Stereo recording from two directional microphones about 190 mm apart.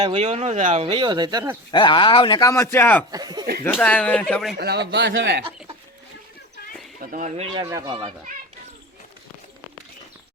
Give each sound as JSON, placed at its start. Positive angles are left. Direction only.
{"t": 0.1, "sound": "speech", "side_deg": -35}
{"t": 1.7, "sound": "speech", "side_deg": 25}
{"t": 3.1, "sound": "speech", "side_deg": -20}
{"t": 3.6, "sound": "speech", "side_deg": 10}
{"t": 4.5, "sound": "speech", "side_deg": -55}
{"t": 7.0, "sound": "speech", "side_deg": -45}
{"t": 7.5, "sound": "speech", "side_deg": -15}